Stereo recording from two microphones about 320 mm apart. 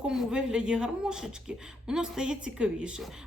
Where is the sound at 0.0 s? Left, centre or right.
Centre.